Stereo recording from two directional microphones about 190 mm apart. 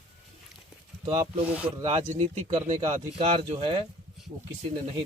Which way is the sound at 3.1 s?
30° right (ahead or behind).